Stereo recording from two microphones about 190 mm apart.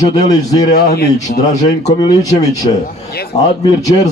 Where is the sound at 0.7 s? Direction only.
55° left (ahead or behind).